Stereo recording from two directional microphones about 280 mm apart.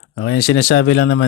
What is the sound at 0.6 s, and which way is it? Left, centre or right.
Speech, left.